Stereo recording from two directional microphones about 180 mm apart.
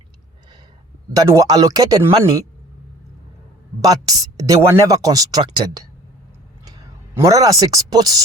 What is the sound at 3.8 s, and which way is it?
Speech, 20° right (ahead or behind).